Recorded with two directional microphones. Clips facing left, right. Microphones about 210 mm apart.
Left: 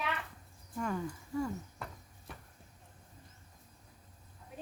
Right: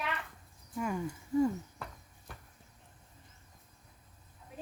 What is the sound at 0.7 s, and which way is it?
Speech, 10° right (ahead or behind).